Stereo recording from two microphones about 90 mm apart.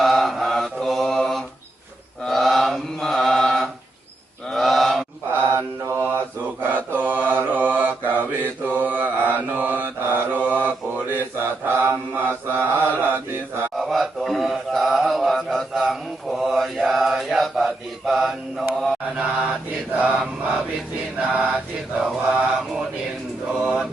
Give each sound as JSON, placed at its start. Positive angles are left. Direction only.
{"t": 0.0, "sound": "mantra", "side_deg": 0}
{"t": 4.4, "sound": "chant", "side_deg": 0}
{"t": 5.4, "sound": "mantra", "side_deg": -25}
{"t": 13.7, "sound": "mantra", "side_deg": 0}
{"t": 19.1, "sound": "mantra", "side_deg": -10}
{"t": 21.2, "sound": "mantra", "side_deg": -10}
{"t": 23.5, "sound": "a sound", "side_deg": -10}